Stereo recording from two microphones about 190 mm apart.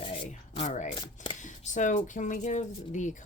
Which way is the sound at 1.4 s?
40° left (ahead or behind).